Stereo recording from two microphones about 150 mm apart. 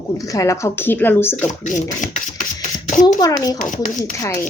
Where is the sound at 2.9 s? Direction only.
55° left (ahead or behind).